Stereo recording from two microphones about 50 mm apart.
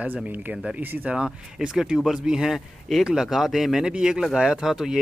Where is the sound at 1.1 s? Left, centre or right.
Centre.